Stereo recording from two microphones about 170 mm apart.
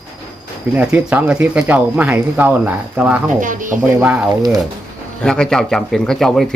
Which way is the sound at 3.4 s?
50° right (ahead or behind).